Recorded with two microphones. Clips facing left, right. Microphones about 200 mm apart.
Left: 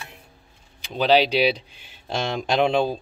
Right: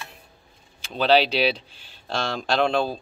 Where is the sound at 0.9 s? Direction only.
10° left (ahead or behind).